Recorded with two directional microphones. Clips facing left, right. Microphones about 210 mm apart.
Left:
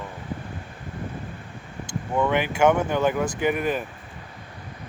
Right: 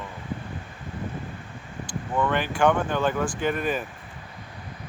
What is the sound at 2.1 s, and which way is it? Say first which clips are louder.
Speech: left 2 dB; 15° left (ahead or behind).